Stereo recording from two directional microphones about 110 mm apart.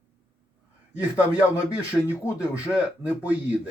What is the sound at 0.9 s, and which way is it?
Speech, 15° right (ahead or behind).